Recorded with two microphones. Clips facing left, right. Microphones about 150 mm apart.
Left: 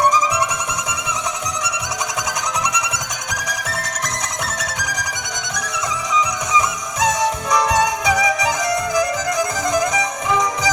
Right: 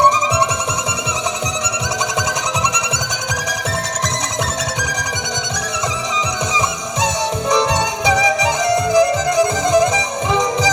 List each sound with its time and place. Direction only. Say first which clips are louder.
0.0 s music: right 2 dB; 30° right (ahead or behind)
4.8 s music: right 3 dB; 30° right (ahead or behind)
6.1 s music: left 3 dB; 30° right (ahead or behind)